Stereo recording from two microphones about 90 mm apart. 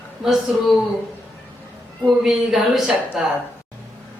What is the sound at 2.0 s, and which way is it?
A woman's voice, 5° right (ahead or behind).